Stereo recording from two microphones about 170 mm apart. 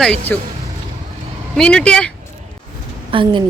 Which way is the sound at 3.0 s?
30° right (ahead or behind).